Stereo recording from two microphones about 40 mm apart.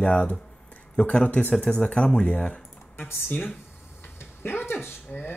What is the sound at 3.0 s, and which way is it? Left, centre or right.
Speech, left.